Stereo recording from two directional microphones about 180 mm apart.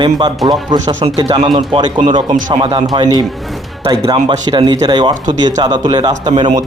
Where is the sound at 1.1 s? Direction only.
20° right (ahead or behind).